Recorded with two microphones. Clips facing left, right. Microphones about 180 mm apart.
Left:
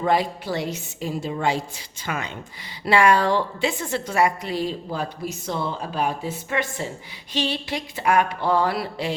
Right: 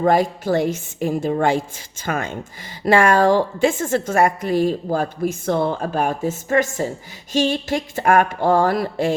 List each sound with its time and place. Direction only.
0.0 s a woman's voice: 45° right (ahead or behind)